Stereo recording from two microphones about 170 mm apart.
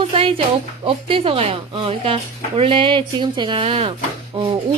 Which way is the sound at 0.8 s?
30° right (ahead or behind).